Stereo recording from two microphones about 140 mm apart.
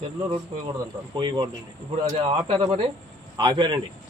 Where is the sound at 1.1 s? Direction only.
35° right (ahead or behind).